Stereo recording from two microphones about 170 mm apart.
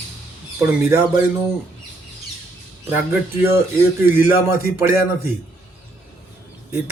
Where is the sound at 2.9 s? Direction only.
15° right (ahead or behind).